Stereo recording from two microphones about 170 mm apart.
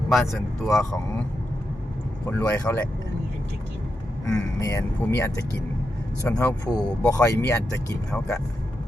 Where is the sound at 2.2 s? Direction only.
15° left (ahead or behind).